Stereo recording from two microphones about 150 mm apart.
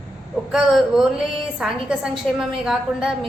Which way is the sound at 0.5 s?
Centre (ahead or behind).